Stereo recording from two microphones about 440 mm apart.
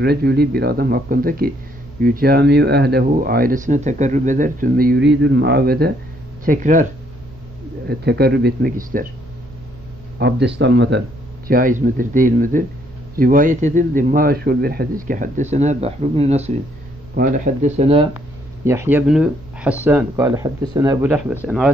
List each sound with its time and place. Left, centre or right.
0.0 s speech: right
8.0 s speech: right
10.1 s speech: right; by 21.6 s centre